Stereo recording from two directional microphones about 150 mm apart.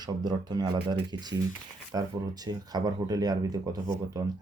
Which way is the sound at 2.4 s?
25° right (ahead or behind).